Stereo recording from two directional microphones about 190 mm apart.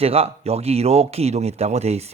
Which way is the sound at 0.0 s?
30° right (ahead or behind).